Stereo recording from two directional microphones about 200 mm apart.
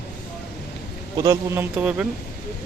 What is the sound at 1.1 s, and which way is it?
Speech, 15° right (ahead or behind).